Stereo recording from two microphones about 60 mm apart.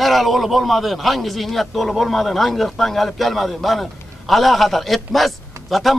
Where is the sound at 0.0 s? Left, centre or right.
Centre.